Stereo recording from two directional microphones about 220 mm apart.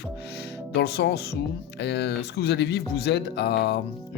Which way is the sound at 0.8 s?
50° left (ahead or behind).